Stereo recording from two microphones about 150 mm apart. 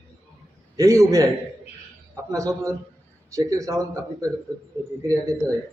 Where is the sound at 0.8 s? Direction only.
20° right (ahead or behind).